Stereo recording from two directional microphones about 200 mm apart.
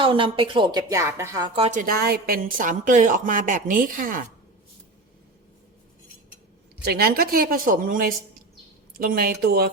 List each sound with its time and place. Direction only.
0.0 s a woman's voice: 25° right (ahead or behind)
1.5 s a woman's voice: 30° right (ahead or behind)
1.8 s a woman's voice: 50° right (ahead or behind)
6.8 s a woman's voice: 50° right (ahead or behind)